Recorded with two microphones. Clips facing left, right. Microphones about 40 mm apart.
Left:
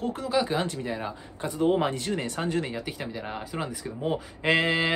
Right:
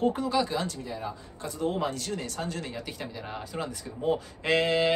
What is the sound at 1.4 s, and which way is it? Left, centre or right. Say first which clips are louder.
Speech: left 5 dB; left.